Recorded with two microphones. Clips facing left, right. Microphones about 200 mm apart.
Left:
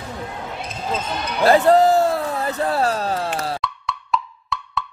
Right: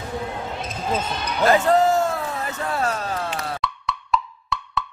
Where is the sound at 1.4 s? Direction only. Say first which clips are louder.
Left 4 dB; 35° left (ahead or behind).